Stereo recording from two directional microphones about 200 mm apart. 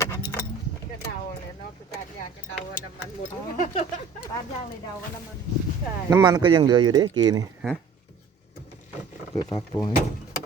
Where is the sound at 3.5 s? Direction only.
35° left (ahead or behind).